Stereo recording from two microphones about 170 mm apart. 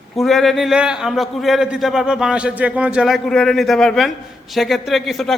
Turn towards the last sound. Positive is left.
turn(degrees=0)  # may be behind; listen again after turning